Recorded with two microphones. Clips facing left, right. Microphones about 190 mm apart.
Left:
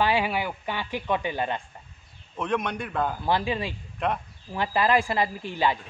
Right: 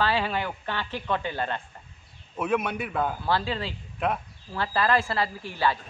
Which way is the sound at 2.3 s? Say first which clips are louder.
Right 1 dB; 5° right (ahead or behind).